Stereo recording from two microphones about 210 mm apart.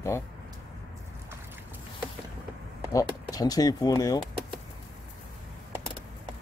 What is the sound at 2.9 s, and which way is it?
Speech, 20° left (ahead or behind).